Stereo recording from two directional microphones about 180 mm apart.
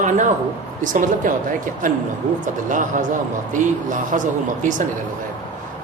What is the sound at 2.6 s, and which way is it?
A man's voice, 45° right (ahead or behind).